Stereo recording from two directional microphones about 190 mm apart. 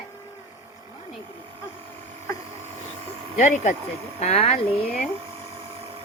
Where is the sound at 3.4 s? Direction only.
40° left (ahead or behind).